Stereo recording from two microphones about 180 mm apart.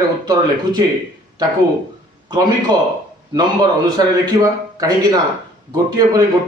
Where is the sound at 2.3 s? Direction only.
25° right (ahead or behind).